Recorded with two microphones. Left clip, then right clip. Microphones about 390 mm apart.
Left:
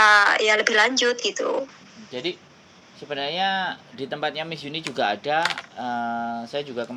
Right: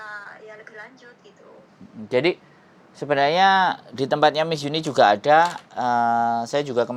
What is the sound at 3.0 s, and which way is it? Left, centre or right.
Speech, right.